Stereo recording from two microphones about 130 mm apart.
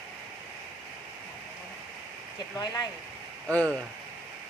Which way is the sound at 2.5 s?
30° left (ahead or behind).